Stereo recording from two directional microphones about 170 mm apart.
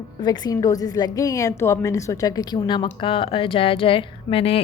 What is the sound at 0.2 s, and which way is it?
A woman's voice, 25° left (ahead or behind).